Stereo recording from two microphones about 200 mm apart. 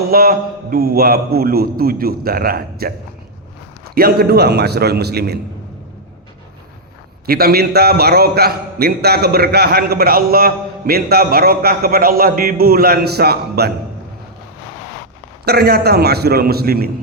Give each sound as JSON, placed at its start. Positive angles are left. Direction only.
{"t": 0.1, "sound": "a man's voice", "side_deg": -50}
{"t": 3.9, "sound": "a man's voice", "side_deg": -50}
{"t": 7.3, "sound": "a man's voice", "side_deg": -50}
{"t": 15.4, "sound": "a man's voice", "side_deg": -50}